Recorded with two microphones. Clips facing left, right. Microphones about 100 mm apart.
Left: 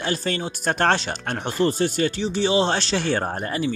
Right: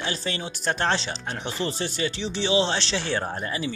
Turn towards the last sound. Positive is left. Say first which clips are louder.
# left 4 dB
turn(degrees=45)  # may be behind; listen again after turning